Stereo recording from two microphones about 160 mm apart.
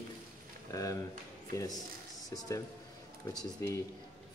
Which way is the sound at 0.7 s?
20° left (ahead or behind).